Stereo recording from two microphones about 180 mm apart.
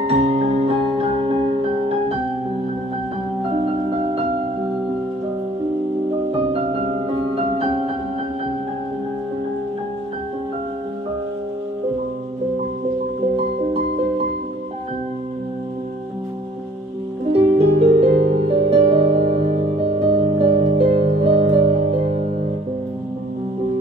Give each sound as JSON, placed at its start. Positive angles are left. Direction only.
{"t": 0.0, "sound": "music", "side_deg": -35}
{"t": 6.5, "sound": "music", "side_deg": -35}
{"t": 17.3, "sound": "music", "side_deg": -35}